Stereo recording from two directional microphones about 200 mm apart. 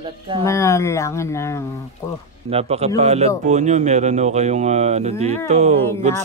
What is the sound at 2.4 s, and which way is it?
Speech, 30° right (ahead or behind).